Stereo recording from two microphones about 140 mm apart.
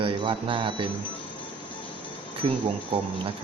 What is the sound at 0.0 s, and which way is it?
Speech, 35° right (ahead or behind).